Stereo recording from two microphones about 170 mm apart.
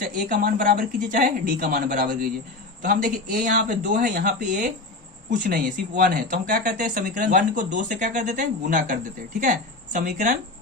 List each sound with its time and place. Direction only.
0.0 s speech: 55° right (ahead or behind)